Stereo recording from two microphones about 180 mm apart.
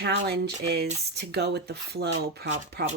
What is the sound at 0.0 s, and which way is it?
A woman's voice, 65° right (ahead or behind).